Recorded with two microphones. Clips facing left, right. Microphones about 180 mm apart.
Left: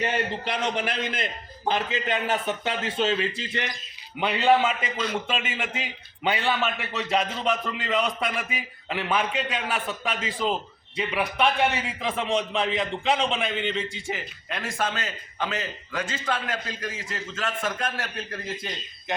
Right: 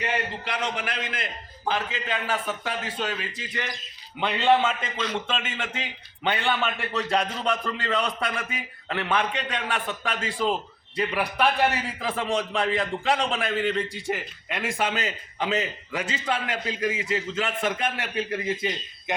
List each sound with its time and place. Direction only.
0.0 s a man's voice: 25° left (ahead or behind)
4.2 s a man's voice: 10° left (ahead or behind)
14.8 s a man's voice: 15° right (ahead or behind)